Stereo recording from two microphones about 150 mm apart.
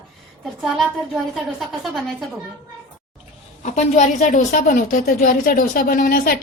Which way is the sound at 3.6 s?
50° left (ahead or behind).